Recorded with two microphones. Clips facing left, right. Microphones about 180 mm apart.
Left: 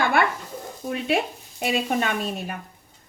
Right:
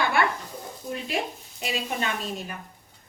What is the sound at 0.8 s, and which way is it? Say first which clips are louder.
Speech: left 7 dB; 70° left (ahead or behind).